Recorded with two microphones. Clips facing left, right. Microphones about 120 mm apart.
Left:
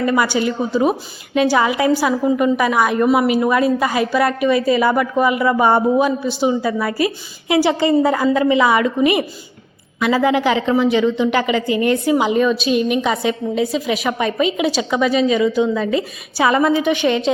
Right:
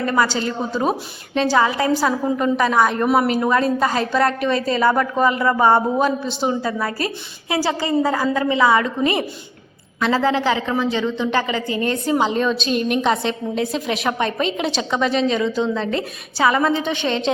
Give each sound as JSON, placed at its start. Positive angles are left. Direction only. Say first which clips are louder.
{"t": 0.0, "sound": "a woman's voice", "louder": "left 3 dB", "side_deg": 10}
{"t": 16.4, "sound": "a woman's voice", "louder": "left 3 dB", "side_deg": 20}